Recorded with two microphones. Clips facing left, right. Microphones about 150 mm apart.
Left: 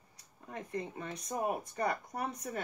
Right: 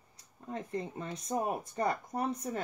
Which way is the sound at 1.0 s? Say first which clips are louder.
Right 2 dB; 30° right (ahead or behind).